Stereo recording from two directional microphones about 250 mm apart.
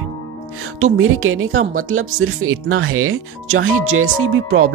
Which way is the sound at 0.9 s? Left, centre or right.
Right.